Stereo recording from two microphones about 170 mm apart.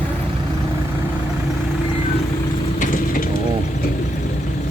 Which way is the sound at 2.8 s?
50° left (ahead or behind).